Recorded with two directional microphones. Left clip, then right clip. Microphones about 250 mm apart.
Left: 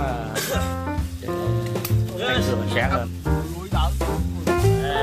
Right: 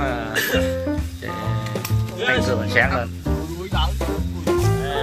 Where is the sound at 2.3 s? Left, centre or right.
Centre.